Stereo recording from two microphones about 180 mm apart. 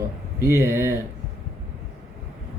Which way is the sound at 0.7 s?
15° left (ahead or behind).